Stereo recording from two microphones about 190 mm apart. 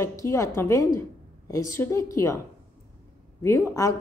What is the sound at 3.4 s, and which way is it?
Speech, 15° left (ahead or behind).